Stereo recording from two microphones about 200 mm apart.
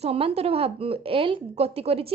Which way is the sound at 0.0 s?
30° right (ahead or behind).